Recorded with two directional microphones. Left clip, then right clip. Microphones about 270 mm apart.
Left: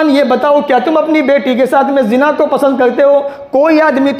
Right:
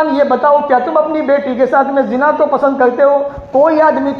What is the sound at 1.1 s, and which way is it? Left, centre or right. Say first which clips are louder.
Speech: left 3 dB; left.